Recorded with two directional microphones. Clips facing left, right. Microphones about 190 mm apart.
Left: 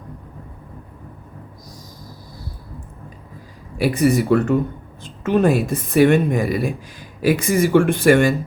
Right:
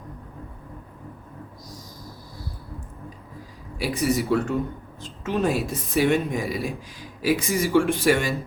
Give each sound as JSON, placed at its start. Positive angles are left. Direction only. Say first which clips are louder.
{"t": 3.8, "sound": "a woman's voice", "louder": "left 7 dB", "side_deg": 60}